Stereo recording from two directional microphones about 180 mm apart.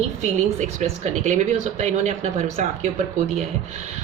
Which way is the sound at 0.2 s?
40° right (ahead or behind).